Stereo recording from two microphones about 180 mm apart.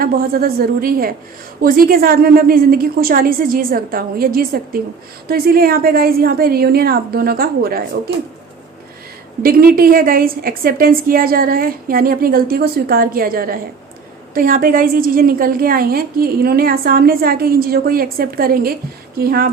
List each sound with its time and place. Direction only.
0.0 s a woman's voice: 55° right (ahead or behind)
9.4 s a woman's voice: 55° right (ahead or behind)